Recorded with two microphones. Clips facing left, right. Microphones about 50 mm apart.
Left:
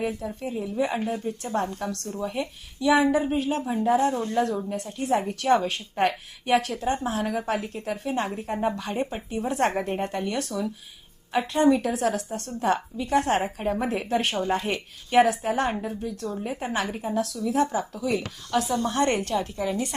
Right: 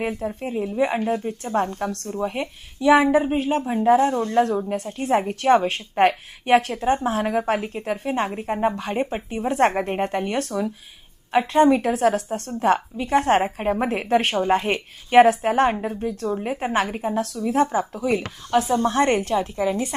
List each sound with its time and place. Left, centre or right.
0.0 s speech: right
15.7 s speech: right
18.0 s speech: right
19.1 s speech: centre